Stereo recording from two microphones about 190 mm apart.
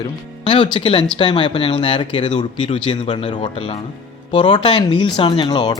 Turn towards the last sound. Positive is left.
turn(degrees=20)  # may be behind; listen again after turning